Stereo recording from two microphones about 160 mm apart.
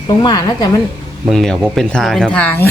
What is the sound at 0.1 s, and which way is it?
Speech, 25° left (ahead or behind).